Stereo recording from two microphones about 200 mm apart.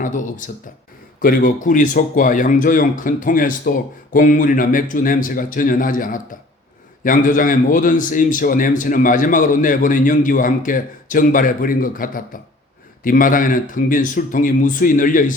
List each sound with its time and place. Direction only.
0.0 s a man's voice: 40° left (ahead or behind)